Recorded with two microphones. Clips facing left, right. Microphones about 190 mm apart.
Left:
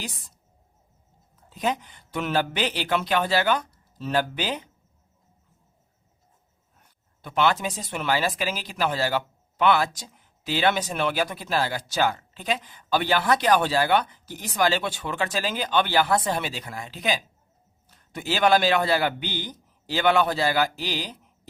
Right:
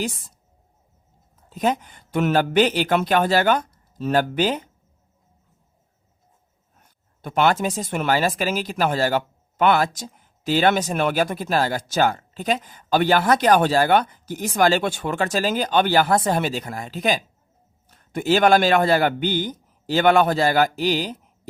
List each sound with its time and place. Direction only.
1.5 s speech: 45° right (ahead or behind)
7.2 s speech: 45° right (ahead or behind)